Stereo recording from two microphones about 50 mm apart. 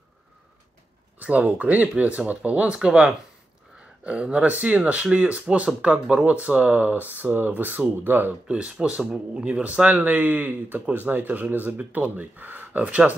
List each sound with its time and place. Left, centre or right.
1.2 s speech: right
8.5 s speech: centre